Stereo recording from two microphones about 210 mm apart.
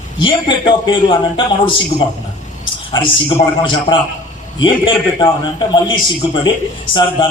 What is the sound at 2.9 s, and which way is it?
A man's voice, 25° left (ahead or behind).